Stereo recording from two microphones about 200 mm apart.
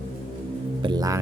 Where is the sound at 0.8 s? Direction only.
20° right (ahead or behind).